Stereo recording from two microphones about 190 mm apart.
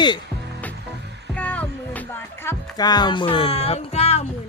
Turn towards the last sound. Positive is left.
turn(degrees=35)  # may be behind; listen again after turning